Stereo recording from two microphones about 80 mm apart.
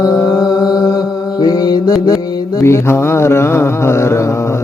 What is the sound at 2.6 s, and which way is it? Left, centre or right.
Mantra, left.